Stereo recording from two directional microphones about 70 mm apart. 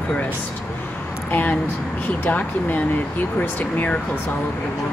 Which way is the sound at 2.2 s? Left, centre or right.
Left.